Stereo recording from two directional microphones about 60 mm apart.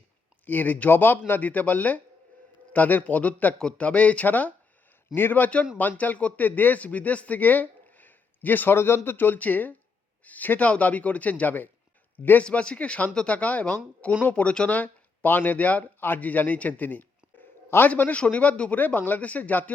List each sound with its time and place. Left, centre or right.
0.4 s speech: left
12.5 s speech: centre